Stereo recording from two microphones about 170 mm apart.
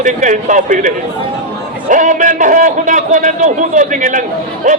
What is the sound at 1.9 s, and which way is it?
A man's voice, 50° right (ahead or behind).